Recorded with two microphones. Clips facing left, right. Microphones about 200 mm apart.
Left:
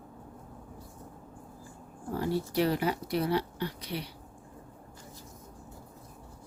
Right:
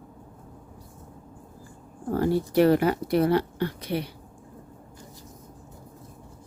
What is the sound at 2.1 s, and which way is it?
Speech, 55° right (ahead or behind).